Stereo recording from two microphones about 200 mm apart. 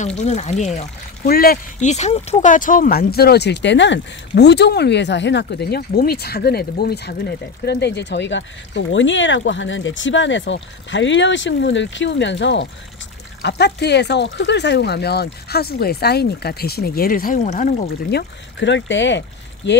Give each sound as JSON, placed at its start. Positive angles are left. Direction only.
{"t": 0.0, "sound": "speech", "side_deg": 35}
{"t": 1.3, "sound": "speech", "side_deg": 50}
{"t": 18.6, "sound": "speech", "side_deg": 65}